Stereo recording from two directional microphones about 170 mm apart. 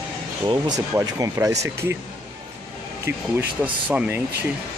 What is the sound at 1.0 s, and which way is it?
Speech, 15° right (ahead or behind).